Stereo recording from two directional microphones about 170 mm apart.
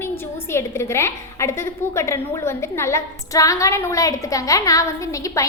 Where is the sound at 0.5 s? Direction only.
15° left (ahead or behind).